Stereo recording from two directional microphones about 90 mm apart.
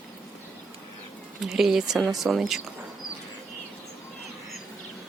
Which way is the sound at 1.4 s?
Centre (ahead or behind).